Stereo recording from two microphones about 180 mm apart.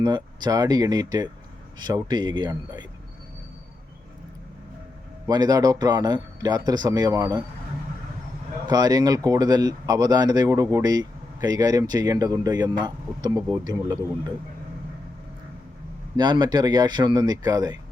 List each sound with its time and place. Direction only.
0.0 s speech: 25° right (ahead or behind)
5.2 s speech: 20° right (ahead or behind)
8.6 s speech: 20° right (ahead or behind)
16.1 s speech: 25° right (ahead or behind)